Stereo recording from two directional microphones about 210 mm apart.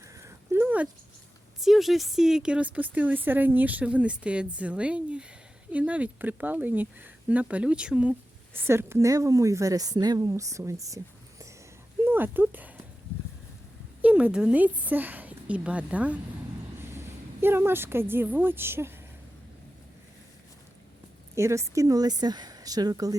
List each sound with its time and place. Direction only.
0.0 s a sound: 15° right (ahead or behind)
1.6 s a woman's voice: centre (ahead or behind)
14.0 s a woman's voice: 5° right (ahead or behind)
21.3 s a woman's voice: 15° right (ahead or behind)